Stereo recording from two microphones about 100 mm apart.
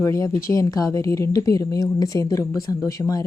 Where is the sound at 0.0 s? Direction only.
30° left (ahead or behind).